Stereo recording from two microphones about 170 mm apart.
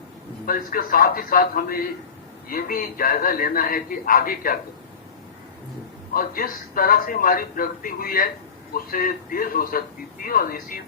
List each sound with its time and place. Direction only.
0.4 s speech: 55° left (ahead or behind)
6.1 s speech: 55° left (ahead or behind)